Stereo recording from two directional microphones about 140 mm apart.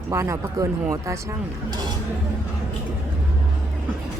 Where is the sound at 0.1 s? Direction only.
20° right (ahead or behind).